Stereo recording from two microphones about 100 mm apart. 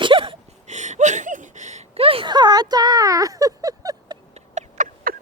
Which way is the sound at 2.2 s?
45° right (ahead or behind).